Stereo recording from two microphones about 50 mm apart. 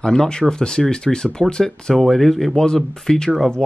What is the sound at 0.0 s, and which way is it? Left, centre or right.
Speech, centre.